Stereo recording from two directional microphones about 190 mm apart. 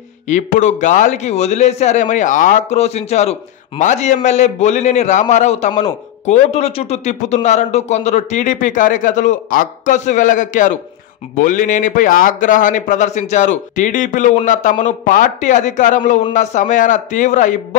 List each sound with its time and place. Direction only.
0.3 s a man's voice: 40° left (ahead or behind)